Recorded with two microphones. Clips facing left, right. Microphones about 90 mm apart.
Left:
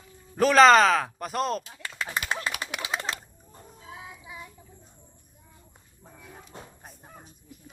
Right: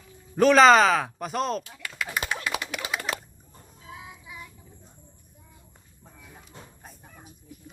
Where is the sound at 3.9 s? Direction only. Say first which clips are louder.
Even; 25° left (ahead or behind).